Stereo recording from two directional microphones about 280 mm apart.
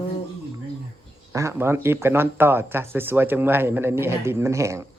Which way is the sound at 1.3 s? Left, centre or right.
Centre.